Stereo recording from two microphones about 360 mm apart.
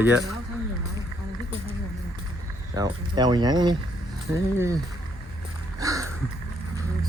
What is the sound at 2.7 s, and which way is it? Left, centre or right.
Speech, centre.